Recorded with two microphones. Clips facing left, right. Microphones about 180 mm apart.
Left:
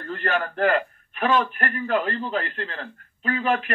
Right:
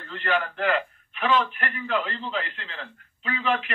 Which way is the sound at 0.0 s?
45° left (ahead or behind).